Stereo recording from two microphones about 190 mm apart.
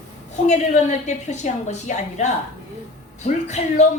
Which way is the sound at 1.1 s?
35° left (ahead or behind).